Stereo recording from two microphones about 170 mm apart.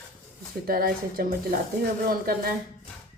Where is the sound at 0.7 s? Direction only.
60° right (ahead or behind).